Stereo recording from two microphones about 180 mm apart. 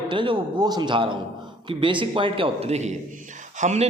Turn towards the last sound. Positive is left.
turn(degrees=-40)  # may be behind; listen again after turning